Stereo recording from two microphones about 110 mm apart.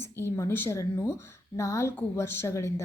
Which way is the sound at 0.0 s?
20° left (ahead or behind).